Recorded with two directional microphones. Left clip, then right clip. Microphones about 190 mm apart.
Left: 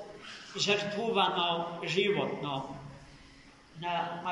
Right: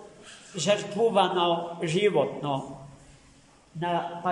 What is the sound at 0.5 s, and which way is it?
A man's voice, 65° right (ahead or behind).